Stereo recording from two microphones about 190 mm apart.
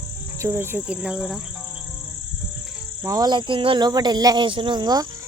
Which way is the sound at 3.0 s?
20° right (ahead or behind).